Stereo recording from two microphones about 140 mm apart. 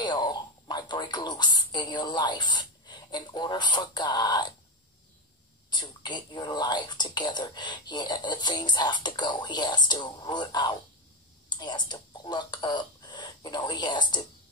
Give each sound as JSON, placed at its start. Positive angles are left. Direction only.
{"t": 0.0, "sound": "speech", "side_deg": 35}
{"t": 5.7, "sound": "speech", "side_deg": 30}